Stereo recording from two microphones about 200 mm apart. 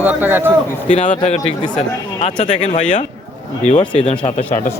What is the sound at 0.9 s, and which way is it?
A man's voice, 35° left (ahead or behind).